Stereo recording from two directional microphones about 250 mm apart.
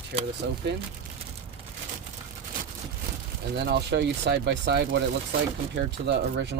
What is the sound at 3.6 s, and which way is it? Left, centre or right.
Speech, right.